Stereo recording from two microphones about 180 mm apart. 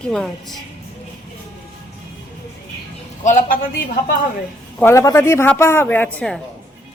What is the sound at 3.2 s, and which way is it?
Speech, 45° left (ahead or behind).